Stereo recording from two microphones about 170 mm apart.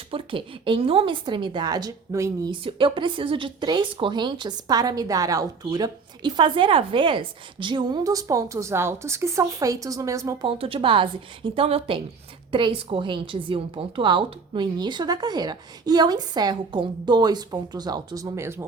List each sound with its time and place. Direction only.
0.1 s speech: 30° right (ahead or behind)
10.4 s speech: 30° right (ahead or behind); by 18.6 s 15° right (ahead or behind)